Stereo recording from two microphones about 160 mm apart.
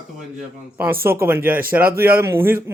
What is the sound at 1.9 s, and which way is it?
Speech, 70° right (ahead or behind).